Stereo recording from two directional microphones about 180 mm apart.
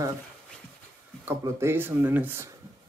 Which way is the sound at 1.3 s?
15° right (ahead or behind).